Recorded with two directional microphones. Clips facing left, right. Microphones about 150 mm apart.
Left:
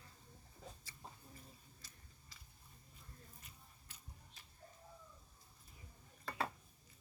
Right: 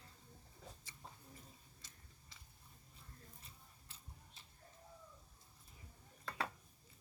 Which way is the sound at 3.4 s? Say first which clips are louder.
Even; 30° right (ahead or behind).